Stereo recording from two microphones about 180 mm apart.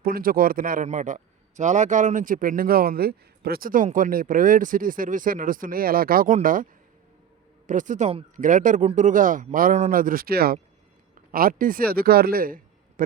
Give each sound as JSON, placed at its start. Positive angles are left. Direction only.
{"t": 0.0, "sound": "a man's voice", "side_deg": -55}
{"t": 7.7, "sound": "a man's voice", "side_deg": -45}